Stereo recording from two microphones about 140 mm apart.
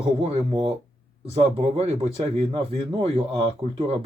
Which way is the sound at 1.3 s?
45° right (ahead or behind).